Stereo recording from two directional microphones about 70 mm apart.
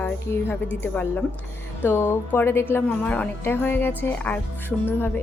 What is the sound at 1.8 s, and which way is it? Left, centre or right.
A woman's voice, left.